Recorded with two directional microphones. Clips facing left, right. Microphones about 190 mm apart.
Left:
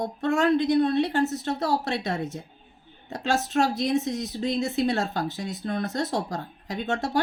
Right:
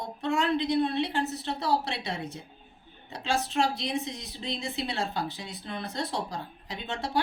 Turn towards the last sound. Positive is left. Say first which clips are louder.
# left 7 dB
turn(degrees=45)  # may be behind; listen again after turning